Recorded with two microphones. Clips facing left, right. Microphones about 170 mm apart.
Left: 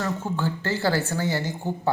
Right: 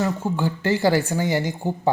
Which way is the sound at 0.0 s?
15° right (ahead or behind).